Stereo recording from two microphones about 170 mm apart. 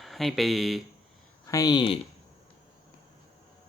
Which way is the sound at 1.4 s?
20° left (ahead or behind).